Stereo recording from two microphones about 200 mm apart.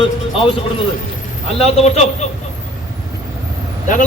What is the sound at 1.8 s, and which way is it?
Speech, 35° left (ahead or behind).